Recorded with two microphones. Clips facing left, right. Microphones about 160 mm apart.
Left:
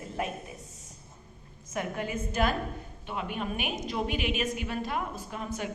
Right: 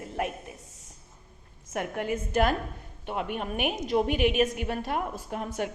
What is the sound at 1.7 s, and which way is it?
A woman's voice, 60° right (ahead or behind).